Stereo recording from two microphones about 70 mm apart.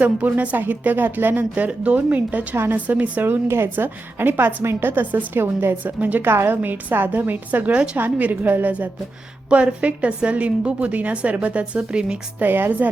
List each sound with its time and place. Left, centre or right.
0.0 s a woman's voice: right
12.4 s a woman's voice: right